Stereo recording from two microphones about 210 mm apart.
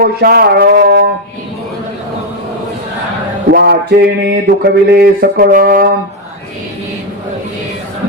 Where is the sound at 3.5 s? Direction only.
50° right (ahead or behind).